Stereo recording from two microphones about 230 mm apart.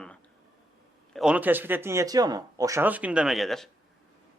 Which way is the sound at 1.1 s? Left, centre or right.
Centre.